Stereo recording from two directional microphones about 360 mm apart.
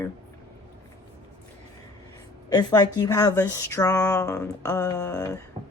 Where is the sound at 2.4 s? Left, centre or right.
Centre.